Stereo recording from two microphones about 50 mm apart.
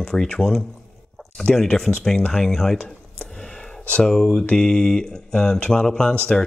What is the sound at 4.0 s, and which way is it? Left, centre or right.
Speech, centre.